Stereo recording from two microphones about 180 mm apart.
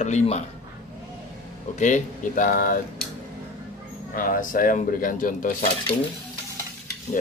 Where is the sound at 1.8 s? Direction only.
45° left (ahead or behind).